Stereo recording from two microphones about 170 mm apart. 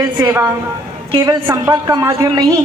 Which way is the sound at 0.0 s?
15° right (ahead or behind).